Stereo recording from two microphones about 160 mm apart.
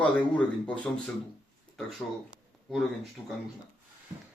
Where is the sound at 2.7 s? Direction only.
Centre (ahead or behind).